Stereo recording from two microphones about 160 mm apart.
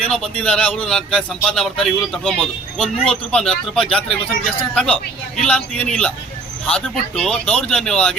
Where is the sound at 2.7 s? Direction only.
5° left (ahead or behind).